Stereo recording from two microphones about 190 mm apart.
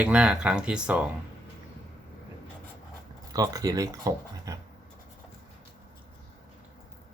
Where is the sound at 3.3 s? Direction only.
20° right (ahead or behind).